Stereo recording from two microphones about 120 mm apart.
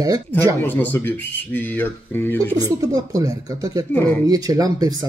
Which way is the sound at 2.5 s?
30° right (ahead or behind).